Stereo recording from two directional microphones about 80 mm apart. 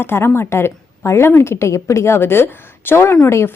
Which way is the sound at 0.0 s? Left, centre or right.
Left.